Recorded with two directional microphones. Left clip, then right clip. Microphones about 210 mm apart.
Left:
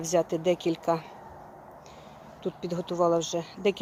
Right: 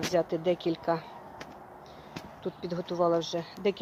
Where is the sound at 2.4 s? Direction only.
10° left (ahead or behind).